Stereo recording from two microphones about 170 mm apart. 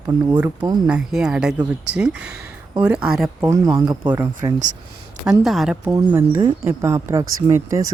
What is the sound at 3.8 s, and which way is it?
Speech, 20° right (ahead or behind).